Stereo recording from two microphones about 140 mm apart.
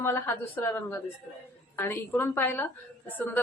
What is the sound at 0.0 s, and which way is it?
A woman's voice, 15° left (ahead or behind).